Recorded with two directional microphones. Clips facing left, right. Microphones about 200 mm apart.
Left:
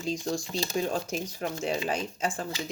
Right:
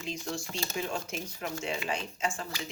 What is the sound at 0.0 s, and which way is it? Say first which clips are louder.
Speech: left 6 dB; 35° left (ahead or behind).